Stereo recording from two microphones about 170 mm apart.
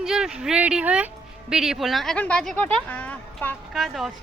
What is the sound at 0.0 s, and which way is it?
Speech, 5° right (ahead or behind).